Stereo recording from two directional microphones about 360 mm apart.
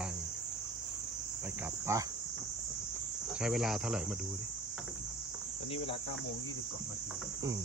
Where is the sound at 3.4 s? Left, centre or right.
Centre.